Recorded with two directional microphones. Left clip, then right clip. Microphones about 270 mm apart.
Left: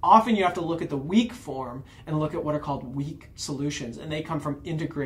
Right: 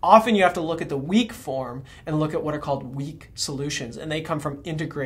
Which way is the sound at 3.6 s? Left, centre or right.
Right.